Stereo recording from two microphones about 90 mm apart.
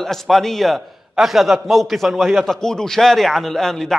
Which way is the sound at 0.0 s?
5° left (ahead or behind).